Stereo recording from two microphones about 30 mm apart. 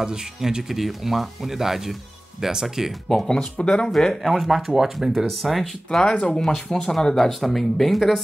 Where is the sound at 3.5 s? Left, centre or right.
Left.